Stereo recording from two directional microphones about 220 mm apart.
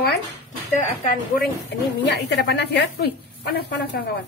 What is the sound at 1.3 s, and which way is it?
A woman's voice, 45° left (ahead or behind).